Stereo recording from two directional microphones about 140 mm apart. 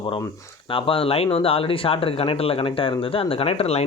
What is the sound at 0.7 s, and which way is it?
Speech, 40° left (ahead or behind).